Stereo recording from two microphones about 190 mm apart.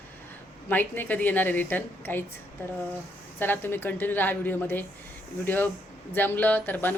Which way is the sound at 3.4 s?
10° left (ahead or behind).